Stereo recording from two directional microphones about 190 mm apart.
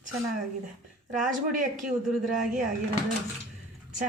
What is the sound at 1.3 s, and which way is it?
Speech, 45° right (ahead or behind).